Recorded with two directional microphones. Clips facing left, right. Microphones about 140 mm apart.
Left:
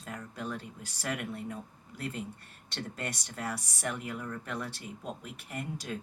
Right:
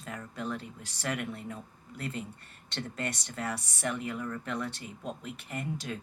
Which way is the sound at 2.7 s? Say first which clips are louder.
Right 2 dB; 10° left (ahead or behind).